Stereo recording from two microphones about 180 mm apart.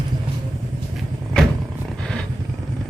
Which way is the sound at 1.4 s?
5° left (ahead or behind).